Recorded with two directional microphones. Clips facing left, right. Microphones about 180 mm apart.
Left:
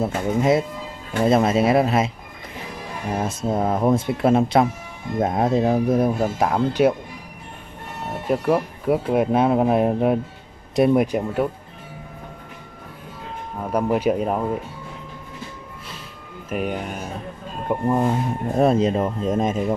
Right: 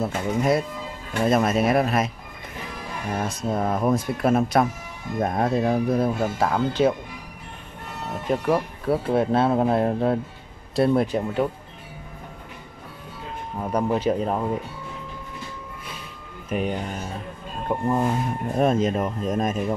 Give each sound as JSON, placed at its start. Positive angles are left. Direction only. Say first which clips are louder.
{"t": 0.0, "sound": "speech", "louder": "left 3 dB", "side_deg": 25}
{"t": 3.1, "sound": "speech", "louder": "left 3 dB", "side_deg": 25}
{"t": 8.3, "sound": "speech", "louder": "left 2 dB", "side_deg": 10}
{"t": 13.7, "sound": "speech", "louder": "left 2 dB", "side_deg": 10}
{"t": 16.4, "sound": "speech", "louder": "even", "side_deg": 5}
{"t": 17.8, "sound": "speech", "louder": "left 3 dB", "side_deg": 25}
{"t": 18.6, "sound": "speech", "louder": "left 3 dB", "side_deg": 35}